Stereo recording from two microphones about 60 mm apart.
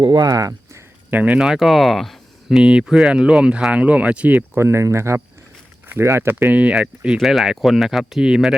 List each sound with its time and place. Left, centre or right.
0.3 s a sound: right
1.1 s speech: right
1.5 s speech: centre
2.5 s speech: centre
3.1 s speech: centre
4.5 s speech: right
6.4 s speech: right
6.7 s speech: centre